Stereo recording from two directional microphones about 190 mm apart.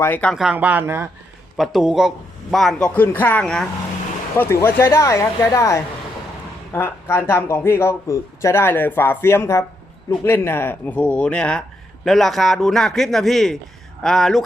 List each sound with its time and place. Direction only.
0.0 s speech: 10° left (ahead or behind); by 1.1 s 10° right (ahead or behind)
1.5 s a man's voice: centre (ahead or behind)